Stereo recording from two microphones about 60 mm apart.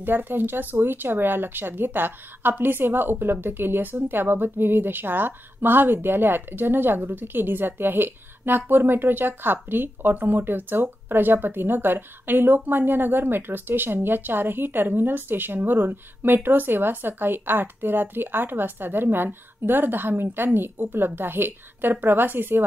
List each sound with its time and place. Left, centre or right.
0.0 s a woman's voice: right